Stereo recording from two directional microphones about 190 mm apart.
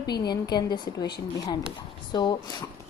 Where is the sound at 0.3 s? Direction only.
20° left (ahead or behind).